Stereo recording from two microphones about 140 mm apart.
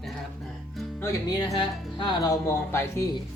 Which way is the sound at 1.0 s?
20° left (ahead or behind).